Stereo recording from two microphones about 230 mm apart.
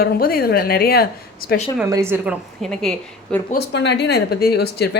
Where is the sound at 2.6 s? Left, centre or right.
Centre.